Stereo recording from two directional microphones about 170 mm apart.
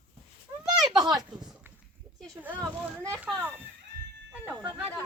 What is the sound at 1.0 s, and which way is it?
Speech, 25° right (ahead or behind).